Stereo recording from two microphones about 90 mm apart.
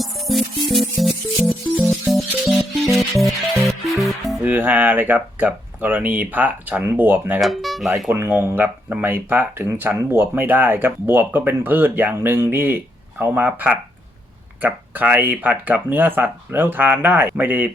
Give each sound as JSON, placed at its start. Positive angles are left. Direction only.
{"t": 0.0, "sound": "music", "side_deg": 0}
{"t": 2.9, "sound": "music", "side_deg": 0}
{"t": 4.4, "sound": "speech", "side_deg": -20}
{"t": 7.4, "sound": "speech", "side_deg": 0}
{"t": 8.1, "sound": "speech", "side_deg": -25}